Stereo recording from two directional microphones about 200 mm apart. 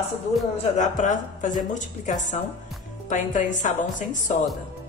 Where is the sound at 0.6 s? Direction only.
40° left (ahead or behind).